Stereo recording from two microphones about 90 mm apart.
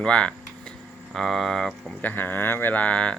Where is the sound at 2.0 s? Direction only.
20° left (ahead or behind).